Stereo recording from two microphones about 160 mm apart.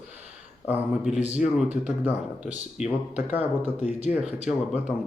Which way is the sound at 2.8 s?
45° left (ahead or behind).